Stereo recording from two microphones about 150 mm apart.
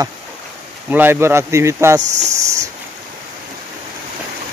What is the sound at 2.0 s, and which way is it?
Cricket, 50° right (ahead or behind).